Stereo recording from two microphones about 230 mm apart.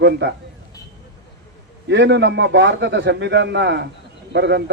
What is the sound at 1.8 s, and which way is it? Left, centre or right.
A man's voice, right.